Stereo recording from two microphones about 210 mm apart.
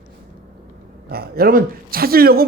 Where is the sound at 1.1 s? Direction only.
45° right (ahead or behind).